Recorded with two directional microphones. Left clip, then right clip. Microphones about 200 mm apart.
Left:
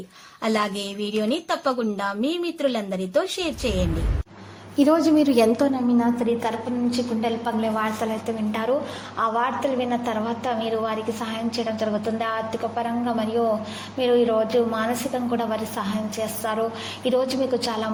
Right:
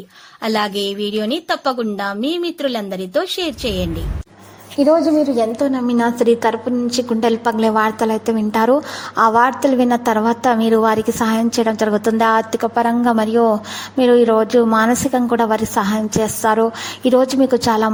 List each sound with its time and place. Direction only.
0.4 s a woman's voice: 30° right (ahead or behind)
4.8 s a woman's voice: 5° right (ahead or behind)
5.9 s a woman's voice: 35° right (ahead or behind)